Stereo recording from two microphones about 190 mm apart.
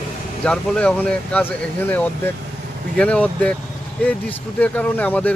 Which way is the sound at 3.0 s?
5° left (ahead or behind).